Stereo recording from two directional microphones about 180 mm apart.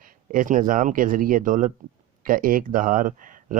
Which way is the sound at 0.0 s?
50° right (ahead or behind).